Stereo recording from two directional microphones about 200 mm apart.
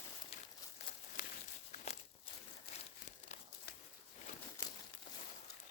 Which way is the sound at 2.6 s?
30° left (ahead or behind).